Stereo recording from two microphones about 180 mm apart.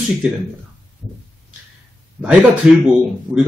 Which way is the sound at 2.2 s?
5° right (ahead or behind).